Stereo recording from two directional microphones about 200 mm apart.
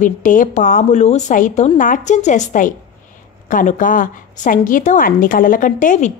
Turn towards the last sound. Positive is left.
turn(degrees=40)  # may be behind; listen again after turning